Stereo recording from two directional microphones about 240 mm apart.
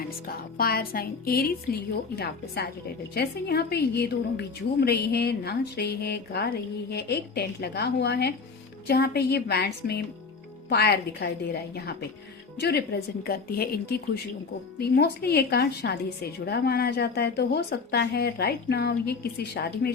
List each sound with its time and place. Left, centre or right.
0.5 s a woman's voice: left